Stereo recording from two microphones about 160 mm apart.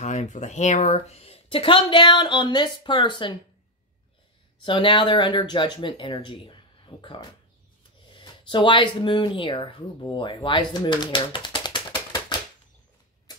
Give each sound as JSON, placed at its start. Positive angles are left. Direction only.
{"t": 0.0, "sound": "speech", "side_deg": 45}
{"t": 4.6, "sound": "speech", "side_deg": 30}